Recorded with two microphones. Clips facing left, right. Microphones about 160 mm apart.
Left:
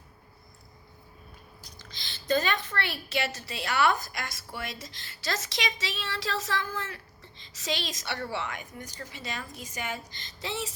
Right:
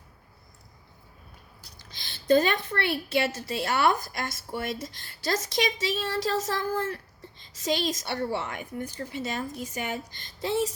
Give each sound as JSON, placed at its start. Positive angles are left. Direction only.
{"t": 1.8, "sound": "a woman's voice", "side_deg": -55}